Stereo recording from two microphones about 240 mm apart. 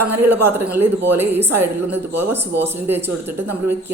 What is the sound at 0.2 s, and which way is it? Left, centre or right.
Speech, right.